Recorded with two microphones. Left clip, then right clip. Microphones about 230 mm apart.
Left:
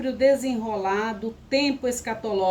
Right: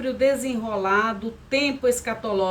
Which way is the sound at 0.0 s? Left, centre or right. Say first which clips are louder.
Left 1 dB; centre.